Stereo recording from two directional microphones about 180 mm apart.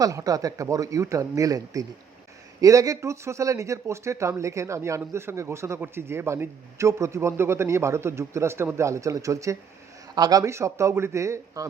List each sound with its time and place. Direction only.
0.0 s speech: 20° right (ahead or behind)